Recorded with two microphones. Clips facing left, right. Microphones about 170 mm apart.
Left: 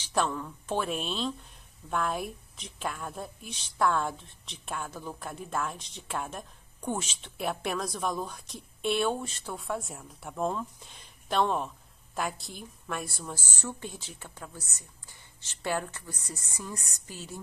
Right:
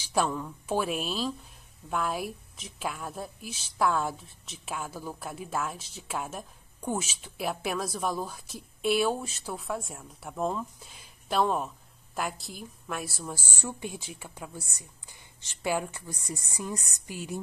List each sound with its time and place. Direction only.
0.0 s a woman's voice: 10° right (ahead or behind)